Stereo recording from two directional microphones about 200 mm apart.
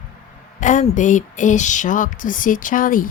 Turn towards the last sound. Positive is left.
turn(degrees=45)  # may be behind; listen again after turning